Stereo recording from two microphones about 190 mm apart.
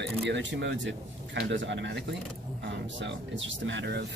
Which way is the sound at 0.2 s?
70° right (ahead or behind).